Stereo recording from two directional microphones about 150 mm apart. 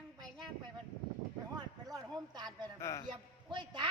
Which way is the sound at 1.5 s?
25° right (ahead or behind).